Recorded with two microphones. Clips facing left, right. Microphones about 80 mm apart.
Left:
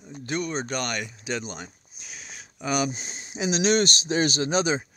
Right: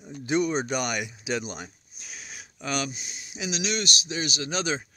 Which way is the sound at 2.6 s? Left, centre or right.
Centre.